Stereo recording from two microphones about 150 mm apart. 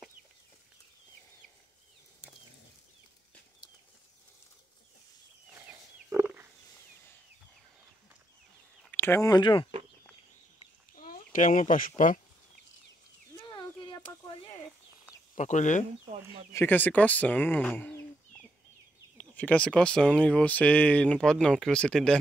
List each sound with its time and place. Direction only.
5.5 s wild animals: 15° right (ahead or behind)
8.9 s speech: 15° left (ahead or behind); by 9.7 s 30° left (ahead or behind)
11.0 s speech: 60° left (ahead or behind)
13.3 s a sound: 30° left (ahead or behind)
15.3 s speech: 55° left (ahead or behind)
16.5 s speech: 10° left (ahead or behind)
19.1 s speech: 10° left (ahead or behind)